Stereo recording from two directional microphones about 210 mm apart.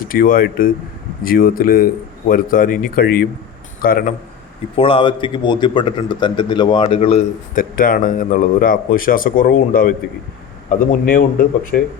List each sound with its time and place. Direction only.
0.0 s a man's voice: 45° left (ahead or behind)
4.8 s a man's voice: 25° left (ahead or behind)
7.5 s speech: 40° left (ahead or behind)